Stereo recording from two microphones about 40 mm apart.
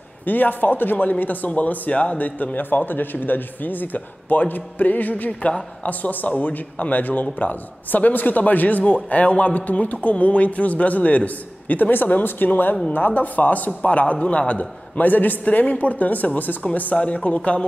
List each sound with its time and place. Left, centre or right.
0.2 s a man's voice: left
13.7 s a man's voice: left
16.9 s a man's voice: left